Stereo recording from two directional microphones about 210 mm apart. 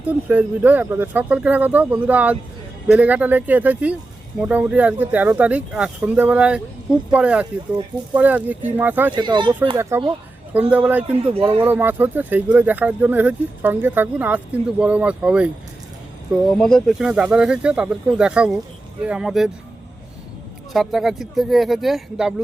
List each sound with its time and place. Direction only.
0.1 s speech: 5° right (ahead or behind)
9.1 s speech: 20° right (ahead or behind)
11.2 s speech: 25° right (ahead or behind)
11.6 s speech: 10° right (ahead or behind)
20.7 s speech: centre (ahead or behind)